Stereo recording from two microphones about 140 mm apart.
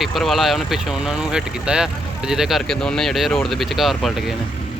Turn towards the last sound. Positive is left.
turn(degrees=0)  # may be behind; listen again after turning